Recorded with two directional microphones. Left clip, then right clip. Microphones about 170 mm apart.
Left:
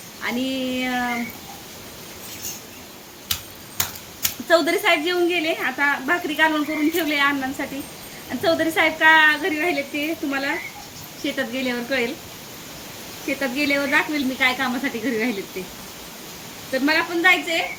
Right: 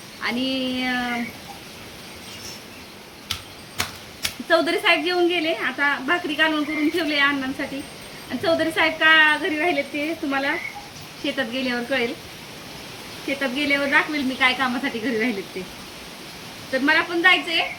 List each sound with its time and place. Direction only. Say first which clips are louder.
0.2 s a woman's voice: right 1 dB; 5° left (ahead or behind)
4.2 s a woman's voice: left 2 dB; 10° left (ahead or behind)
13.2 s a woman's voice: left 1 dB; 5° left (ahead or behind)
16.7 s a woman's voice: right 1 dB; 5° left (ahead or behind)